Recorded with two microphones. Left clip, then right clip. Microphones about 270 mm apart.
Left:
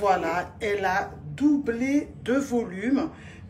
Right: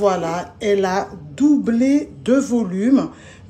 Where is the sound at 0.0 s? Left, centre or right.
Centre.